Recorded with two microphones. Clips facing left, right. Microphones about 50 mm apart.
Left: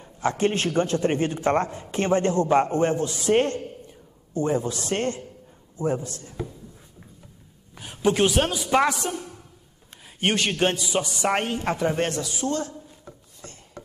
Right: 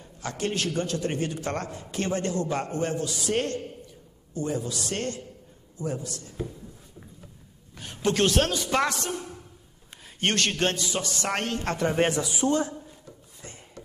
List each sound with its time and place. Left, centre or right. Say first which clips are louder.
0.0 s a man's voice: left 8 dB; left
7.7 s a man's voice: left 4 dB; centre
10.2 s a man's voice: left 3 dB; centre
12.0 s a man's voice: right 2 dB; centre
13.8 s a sound: left 4 dB; left